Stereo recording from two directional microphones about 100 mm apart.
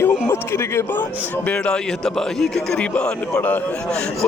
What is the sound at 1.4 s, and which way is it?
A man's voice, 10° left (ahead or behind).